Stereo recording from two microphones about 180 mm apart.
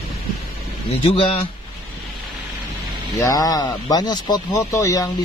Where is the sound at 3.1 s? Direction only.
20° left (ahead or behind).